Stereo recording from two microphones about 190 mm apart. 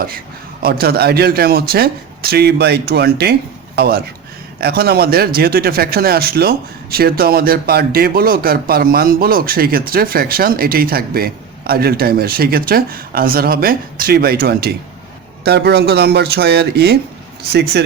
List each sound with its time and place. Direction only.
0.6 s speech: 55° right (ahead or behind)